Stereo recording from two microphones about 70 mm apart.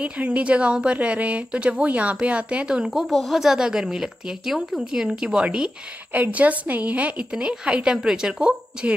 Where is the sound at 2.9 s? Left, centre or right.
Centre.